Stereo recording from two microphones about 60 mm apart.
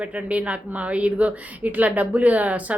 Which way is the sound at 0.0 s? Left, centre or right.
Right.